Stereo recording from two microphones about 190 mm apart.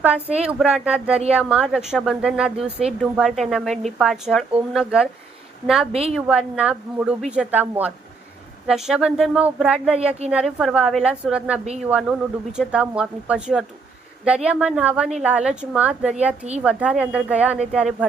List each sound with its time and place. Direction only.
0.3 s a woman's voice: 35° right (ahead or behind)
0.6 s a woman's voice: 5° right (ahead or behind)
5.9 s a woman's voice: 30° right (ahead or behind)
6.1 s a woman's voice: 5° right (ahead or behind)
10.0 s a woman's voice: 35° right (ahead or behind)
10.2 s a woman's voice: 5° right (ahead or behind)